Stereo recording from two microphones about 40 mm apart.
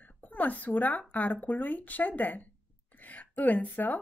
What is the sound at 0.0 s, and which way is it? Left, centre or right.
A woman's voice, left.